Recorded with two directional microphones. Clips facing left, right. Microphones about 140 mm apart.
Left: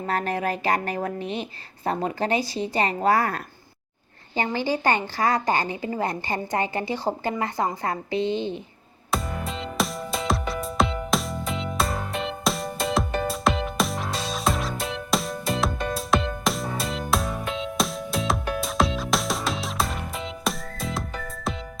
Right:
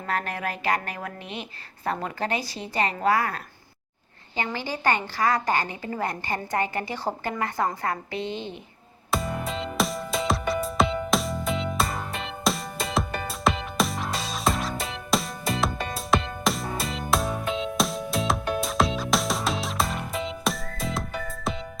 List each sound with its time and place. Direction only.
0.0 s speech: 35° left (ahead or behind)
4.4 s a woman's voice: 25° left (ahead or behind)
9.1 s music: centre (ahead or behind)